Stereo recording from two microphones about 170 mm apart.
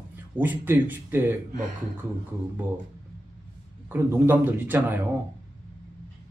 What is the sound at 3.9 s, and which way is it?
Speech, 10° right (ahead or behind).